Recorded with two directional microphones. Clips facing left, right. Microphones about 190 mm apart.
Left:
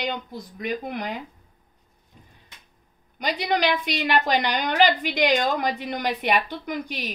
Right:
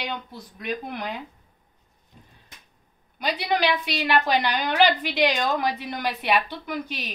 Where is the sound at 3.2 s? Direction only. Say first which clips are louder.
Even; 15° left (ahead or behind).